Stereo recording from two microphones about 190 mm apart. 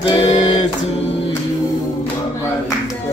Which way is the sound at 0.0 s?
30° left (ahead or behind).